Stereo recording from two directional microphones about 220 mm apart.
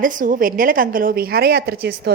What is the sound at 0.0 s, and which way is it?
A woman's voice, 40° right (ahead or behind).